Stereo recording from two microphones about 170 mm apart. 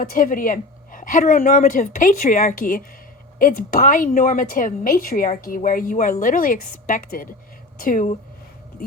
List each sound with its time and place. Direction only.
0.0 s a woman's voice: 55° left (ahead or behind)